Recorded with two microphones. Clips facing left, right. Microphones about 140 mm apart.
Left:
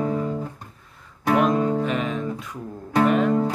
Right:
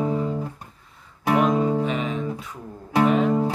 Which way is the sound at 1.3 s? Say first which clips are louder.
Even; 5° right (ahead or behind).